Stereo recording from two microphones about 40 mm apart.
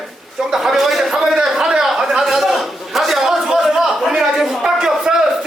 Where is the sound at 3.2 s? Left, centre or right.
Centre.